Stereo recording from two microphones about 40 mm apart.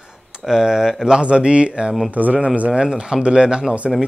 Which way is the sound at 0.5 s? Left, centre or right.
Centre.